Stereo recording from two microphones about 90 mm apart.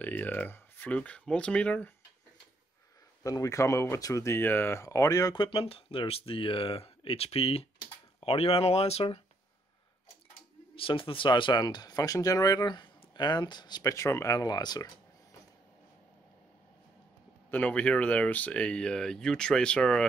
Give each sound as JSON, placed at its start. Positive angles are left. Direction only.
{"t": 0.0, "sound": "speech", "side_deg": 20}
{"t": 3.3, "sound": "speech", "side_deg": 40}
{"t": 5.3, "sound": "speech", "side_deg": 80}
{"t": 10.8, "sound": "speech", "side_deg": 80}
{"t": 13.9, "sound": "speech", "side_deg": 35}
{"t": 17.5, "sound": "speech", "side_deg": 15}